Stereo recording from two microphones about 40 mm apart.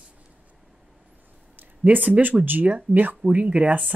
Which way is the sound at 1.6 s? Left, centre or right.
Right.